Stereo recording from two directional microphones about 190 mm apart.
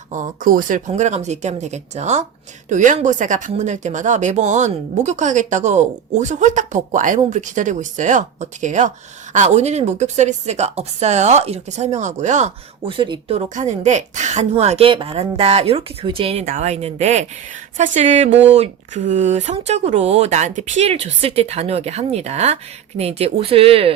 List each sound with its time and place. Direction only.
0.1 s a woman's voice: 45° right (ahead or behind)